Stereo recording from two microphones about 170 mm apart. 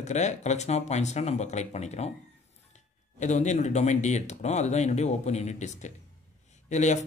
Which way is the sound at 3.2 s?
45° left (ahead or behind).